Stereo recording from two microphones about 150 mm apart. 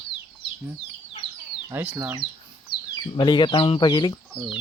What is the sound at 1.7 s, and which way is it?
Speech, 10° right (ahead or behind).